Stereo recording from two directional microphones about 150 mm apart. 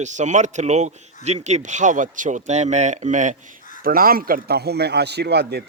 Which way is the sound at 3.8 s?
75° right (ahead or behind).